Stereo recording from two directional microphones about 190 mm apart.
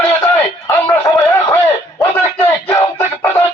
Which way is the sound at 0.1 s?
15° left (ahead or behind).